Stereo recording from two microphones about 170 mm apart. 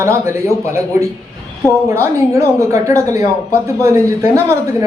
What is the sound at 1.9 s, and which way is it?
A man's voice, 20° right (ahead or behind).